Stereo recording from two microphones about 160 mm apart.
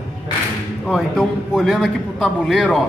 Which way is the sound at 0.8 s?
Centre (ahead or behind).